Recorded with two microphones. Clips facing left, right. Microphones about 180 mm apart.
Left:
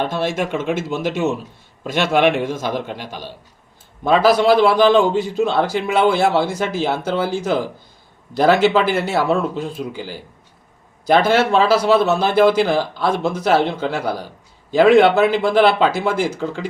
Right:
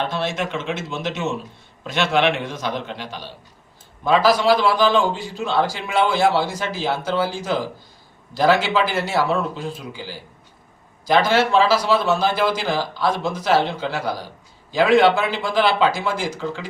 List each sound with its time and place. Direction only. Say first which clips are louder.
0.0 s a man's voice: left 3 dB; 50° left (ahead or behind)
11.3 s a man's voice: left 2 dB; 50° left (ahead or behind)